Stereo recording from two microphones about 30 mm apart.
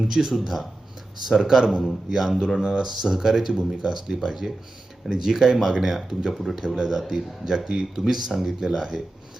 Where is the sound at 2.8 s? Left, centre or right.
Centre.